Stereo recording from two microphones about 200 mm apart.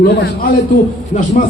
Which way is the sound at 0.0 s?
55° left (ahead or behind).